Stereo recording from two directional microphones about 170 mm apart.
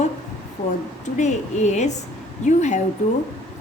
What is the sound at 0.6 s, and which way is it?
A woman's voice, 50° left (ahead or behind).